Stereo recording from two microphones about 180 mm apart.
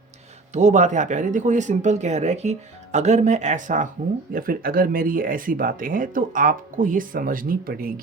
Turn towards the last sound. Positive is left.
turn(degrees=-55)  # may be behind; listen again after turning